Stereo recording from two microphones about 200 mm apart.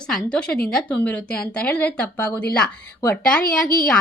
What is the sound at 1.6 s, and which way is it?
A woman's voice, 5° left (ahead or behind).